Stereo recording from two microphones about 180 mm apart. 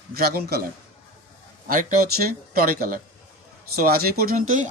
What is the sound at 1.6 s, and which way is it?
Speech, 50° right (ahead or behind).